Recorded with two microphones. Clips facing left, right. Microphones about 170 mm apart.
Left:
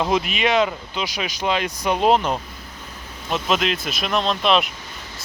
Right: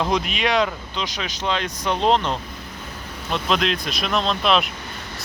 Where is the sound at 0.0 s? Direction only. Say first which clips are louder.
Left 1 dB; 5° left (ahead or behind).